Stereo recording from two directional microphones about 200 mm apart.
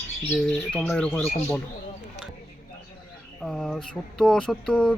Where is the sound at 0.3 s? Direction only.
5° left (ahead or behind).